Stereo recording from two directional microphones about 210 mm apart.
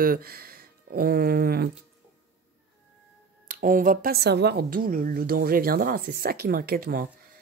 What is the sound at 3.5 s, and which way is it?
Speech, 40° right (ahead or behind).